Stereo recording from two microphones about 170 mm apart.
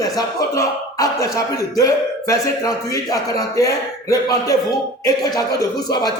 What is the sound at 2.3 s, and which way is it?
A man's voice, 20° left (ahead or behind).